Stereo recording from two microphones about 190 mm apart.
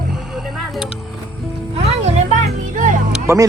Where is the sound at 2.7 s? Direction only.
45° right (ahead or behind).